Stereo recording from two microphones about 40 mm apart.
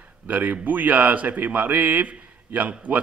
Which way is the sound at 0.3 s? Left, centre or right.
Right.